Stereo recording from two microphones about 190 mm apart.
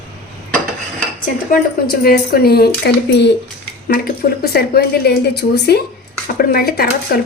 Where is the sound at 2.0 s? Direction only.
55° left (ahead or behind).